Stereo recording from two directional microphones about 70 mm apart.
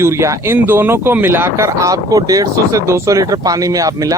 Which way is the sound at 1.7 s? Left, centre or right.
Right.